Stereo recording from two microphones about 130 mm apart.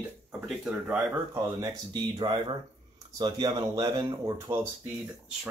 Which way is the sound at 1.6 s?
30° right (ahead or behind).